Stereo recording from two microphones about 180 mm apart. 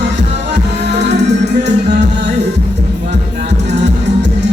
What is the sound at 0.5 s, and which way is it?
Music, 70° right (ahead or behind).